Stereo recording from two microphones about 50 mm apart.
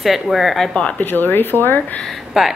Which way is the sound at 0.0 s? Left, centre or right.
Centre.